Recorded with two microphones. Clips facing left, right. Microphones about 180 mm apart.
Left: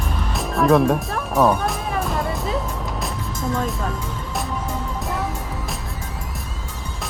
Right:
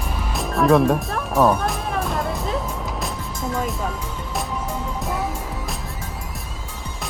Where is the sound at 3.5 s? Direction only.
5° right (ahead or behind).